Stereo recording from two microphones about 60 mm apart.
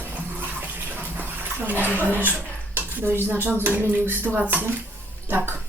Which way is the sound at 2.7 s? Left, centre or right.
Right.